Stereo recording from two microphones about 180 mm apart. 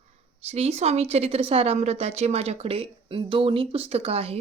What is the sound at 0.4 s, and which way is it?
Speech, 35° right (ahead or behind).